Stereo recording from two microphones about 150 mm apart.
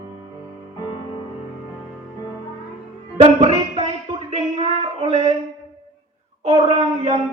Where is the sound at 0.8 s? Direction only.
30° left (ahead or behind).